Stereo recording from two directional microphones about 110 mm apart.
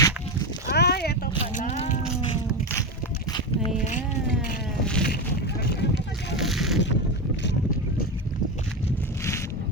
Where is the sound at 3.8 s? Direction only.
90° left.